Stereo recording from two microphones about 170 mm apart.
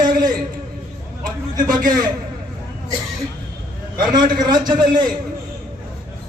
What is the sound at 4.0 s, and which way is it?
A man's voice, 25° right (ahead or behind).